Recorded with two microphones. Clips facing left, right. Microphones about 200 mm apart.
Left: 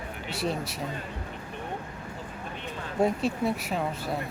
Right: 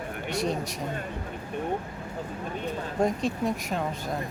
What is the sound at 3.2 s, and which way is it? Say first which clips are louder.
Speech: even; 5° left (ahead or behind).